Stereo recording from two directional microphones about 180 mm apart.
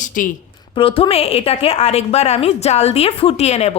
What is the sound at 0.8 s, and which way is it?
A woman's voice, 30° left (ahead or behind).